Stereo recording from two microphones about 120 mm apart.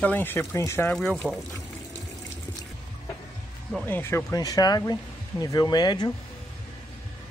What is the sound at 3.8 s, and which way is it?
Speech, 20° left (ahead or behind).